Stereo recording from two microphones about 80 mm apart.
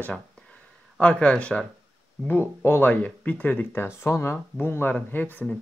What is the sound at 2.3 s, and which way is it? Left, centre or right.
Speech, left.